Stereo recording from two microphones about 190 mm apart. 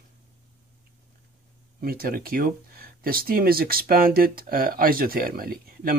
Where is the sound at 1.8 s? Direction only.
50° right (ahead or behind).